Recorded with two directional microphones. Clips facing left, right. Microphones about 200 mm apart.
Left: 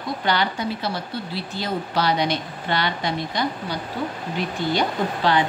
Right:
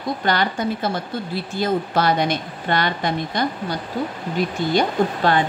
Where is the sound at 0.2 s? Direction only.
50° right (ahead or behind).